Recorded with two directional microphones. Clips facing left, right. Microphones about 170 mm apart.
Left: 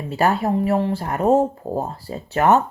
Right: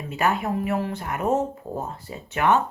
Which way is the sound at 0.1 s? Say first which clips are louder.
Left 5 dB; 35° left (ahead or behind).